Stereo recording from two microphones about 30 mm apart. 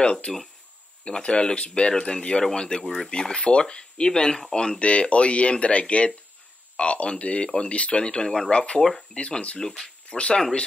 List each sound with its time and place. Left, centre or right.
0.0 s speech: left
2.8 s speech: centre
3.1 s speech: left
4.7 s speech: left
8.7 s speech: centre
9.1 s speech: left